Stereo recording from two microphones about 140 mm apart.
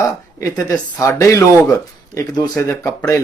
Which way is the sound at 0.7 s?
20° left (ahead or behind).